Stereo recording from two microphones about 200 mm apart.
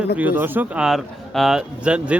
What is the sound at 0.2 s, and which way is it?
Speech, 10° right (ahead or behind).